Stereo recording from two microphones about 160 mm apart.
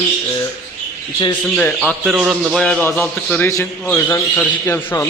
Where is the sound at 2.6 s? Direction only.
5° left (ahead or behind).